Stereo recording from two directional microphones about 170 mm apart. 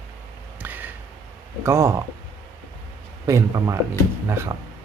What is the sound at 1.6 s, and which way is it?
Speech, 15° right (ahead or behind).